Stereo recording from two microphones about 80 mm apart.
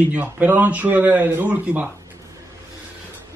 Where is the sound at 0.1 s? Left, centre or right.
Right.